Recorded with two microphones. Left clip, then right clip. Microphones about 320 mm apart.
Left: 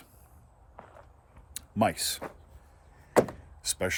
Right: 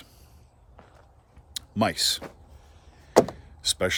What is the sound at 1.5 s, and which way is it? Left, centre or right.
Speech, centre.